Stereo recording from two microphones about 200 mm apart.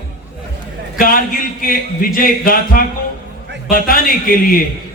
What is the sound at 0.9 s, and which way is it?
A man's voice, 45° left (ahead or behind).